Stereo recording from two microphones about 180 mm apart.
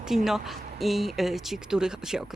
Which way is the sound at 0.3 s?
Centre (ahead or behind).